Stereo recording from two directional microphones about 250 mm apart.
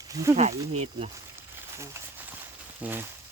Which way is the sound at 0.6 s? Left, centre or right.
Right.